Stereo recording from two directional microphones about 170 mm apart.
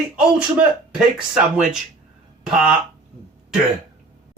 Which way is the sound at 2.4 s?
5° right (ahead or behind).